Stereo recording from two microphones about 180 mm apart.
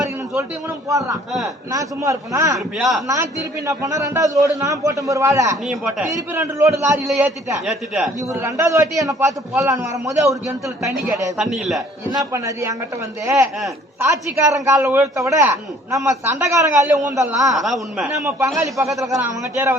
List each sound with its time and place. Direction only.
0.9 s a man's voice: 20° right (ahead or behind)
2.7 s a man's voice: centre (ahead or behind)
3.7 s a man's voice: 20° right (ahead or behind)
5.6 s a man's voice: 5° right (ahead or behind)
6.1 s a man's voice: 15° right (ahead or behind)
7.6 s a man's voice: centre (ahead or behind)
8.3 s a man's voice: 15° right (ahead or behind)
11.3 s a man's voice: centre (ahead or behind)
12.1 s a man's voice: 20° right (ahead or behind)
17.5 s a man's voice: centre (ahead or behind)
18.2 s a man's voice: 15° right (ahead or behind)